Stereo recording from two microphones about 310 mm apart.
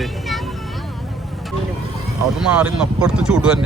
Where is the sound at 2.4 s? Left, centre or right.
Centre.